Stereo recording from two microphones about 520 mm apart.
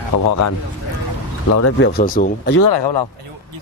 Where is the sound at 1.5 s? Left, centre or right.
Left.